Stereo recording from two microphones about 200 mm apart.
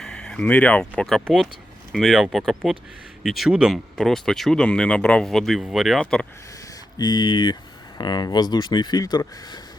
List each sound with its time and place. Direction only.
0.0 s speech: 5° left (ahead or behind)
7.0 s speech: 20° left (ahead or behind)